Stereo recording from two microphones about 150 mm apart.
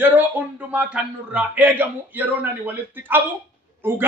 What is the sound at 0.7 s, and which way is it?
A man's voice, 10° right (ahead or behind).